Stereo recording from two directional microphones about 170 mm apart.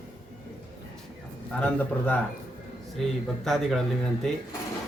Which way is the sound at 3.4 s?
Centre (ahead or behind).